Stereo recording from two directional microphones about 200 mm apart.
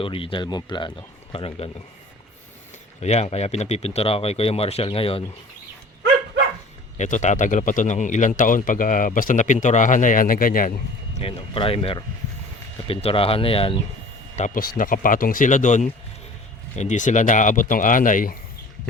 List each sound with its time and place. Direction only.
0.0 s speech: 25° left (ahead or behind)
3.0 s speech: 35° left (ahead or behind)
6.9 s speech: 35° left (ahead or behind)
11.2 s speech: 30° left (ahead or behind)
14.3 s speech: 40° left (ahead or behind)